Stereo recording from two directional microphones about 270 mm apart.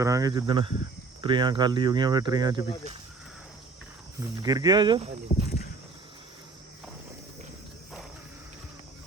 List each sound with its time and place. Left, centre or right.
0.0 s speech: centre
4.4 s speech: centre
5.3 s a sound: left